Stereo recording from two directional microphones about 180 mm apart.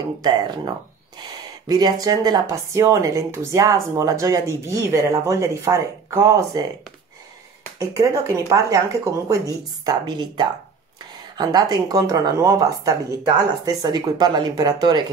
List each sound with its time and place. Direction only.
0.2 s a woman's voice: 20° right (ahead or behind)
7.8 s a woman's voice: 15° right (ahead or behind)